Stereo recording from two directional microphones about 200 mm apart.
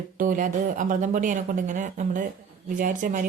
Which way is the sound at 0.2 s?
40° right (ahead or behind).